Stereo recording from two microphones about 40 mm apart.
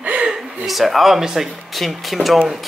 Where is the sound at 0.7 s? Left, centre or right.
Centre.